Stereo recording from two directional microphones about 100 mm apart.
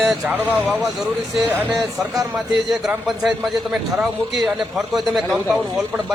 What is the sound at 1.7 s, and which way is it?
A man's voice, centre (ahead or behind).